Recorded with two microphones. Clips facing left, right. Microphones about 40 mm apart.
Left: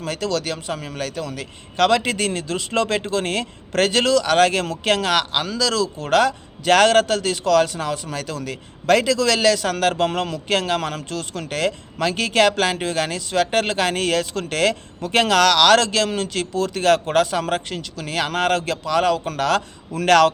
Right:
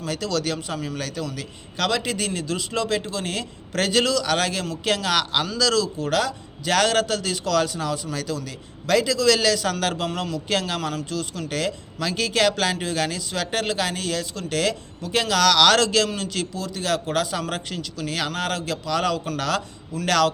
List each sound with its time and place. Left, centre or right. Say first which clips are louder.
0.0 s a man's voice: left 2 dB; left
5.1 s speech: left 2 dB; left
6.0 s a man's voice: left 5 dB; left
11.4 s a man's voice: left 7 dB; left
14.0 s speech: left 7 dB; left
14.5 s a man's voice: left 3 dB; left
16.6 s speech: left 10 dB; left
17.3 s a man's voice: left 5 dB; left
18.3 s a man's voice: left 6 dB; left
18.9 s speech: left 5 dB; left
20.1 s a man's voice: left 6 dB; left